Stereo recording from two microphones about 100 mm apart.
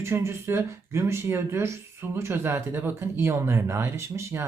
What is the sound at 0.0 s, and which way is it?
Speech, 25° right (ahead or behind).